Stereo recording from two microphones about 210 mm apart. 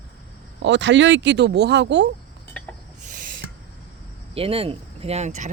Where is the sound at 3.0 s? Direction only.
40° right (ahead or behind).